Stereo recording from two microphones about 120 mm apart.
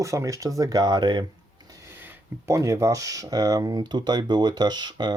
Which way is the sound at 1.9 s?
20° right (ahead or behind).